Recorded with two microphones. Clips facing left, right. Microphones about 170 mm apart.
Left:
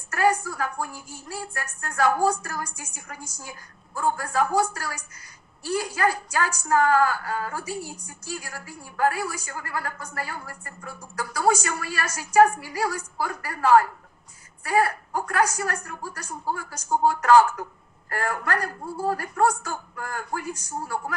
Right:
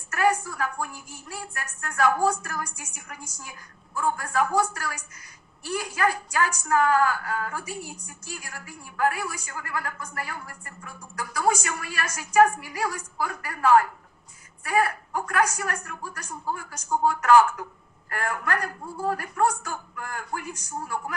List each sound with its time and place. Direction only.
0.1 s a woman's voice: 30° left (ahead or behind)
7.6 s a woman's voice: 15° right (ahead or behind)
7.9 s a woman's voice: 30° left (ahead or behind)